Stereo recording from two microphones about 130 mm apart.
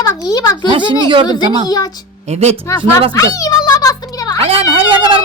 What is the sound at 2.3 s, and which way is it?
Speech, 55° right (ahead or behind).